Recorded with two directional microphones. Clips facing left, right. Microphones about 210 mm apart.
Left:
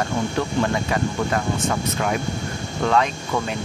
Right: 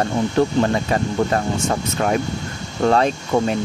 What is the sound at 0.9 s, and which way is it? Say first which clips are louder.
Speech: right 3 dB; 40° right (ahead or behind).